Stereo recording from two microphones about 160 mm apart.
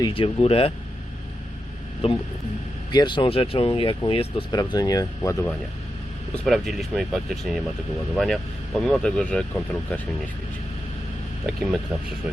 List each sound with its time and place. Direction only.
0.0 s speech: 35° left (ahead or behind)
2.0 s speech: 35° left (ahead or behind); by 5.5 s 20° left (ahead or behind)
6.3 s speech: centre (ahead or behind)
11.4 s speech: centre (ahead or behind)